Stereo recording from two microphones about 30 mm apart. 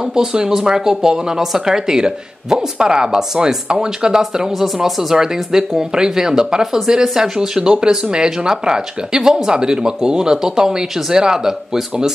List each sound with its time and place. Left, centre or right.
0.0 s speech: right
1.9 s speech: right